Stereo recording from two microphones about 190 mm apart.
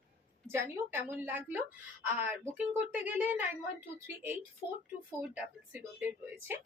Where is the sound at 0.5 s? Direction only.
10° right (ahead or behind).